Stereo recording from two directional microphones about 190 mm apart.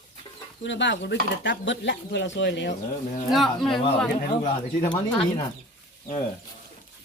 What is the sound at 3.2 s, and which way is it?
Speech, centre (ahead or behind).